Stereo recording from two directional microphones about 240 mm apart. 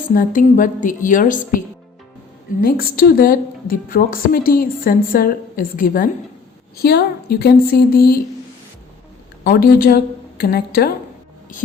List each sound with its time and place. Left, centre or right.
0.1 s a woman's voice: left
9.4 s a woman's voice: left